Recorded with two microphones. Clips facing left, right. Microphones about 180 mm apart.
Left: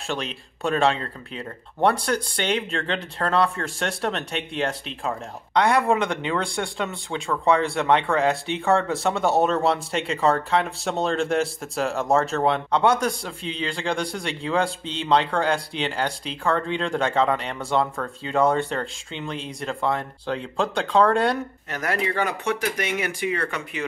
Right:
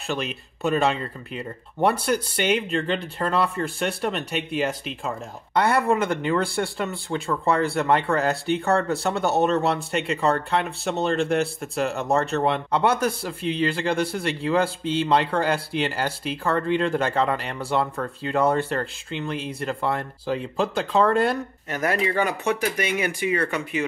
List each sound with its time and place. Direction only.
0.1 s speech: 5° right (ahead or behind)